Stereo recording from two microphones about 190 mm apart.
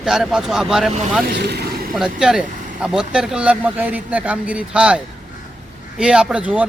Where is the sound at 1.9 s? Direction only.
5° right (ahead or behind).